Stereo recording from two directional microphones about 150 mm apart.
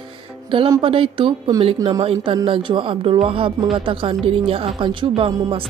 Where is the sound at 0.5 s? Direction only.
35° right (ahead or behind).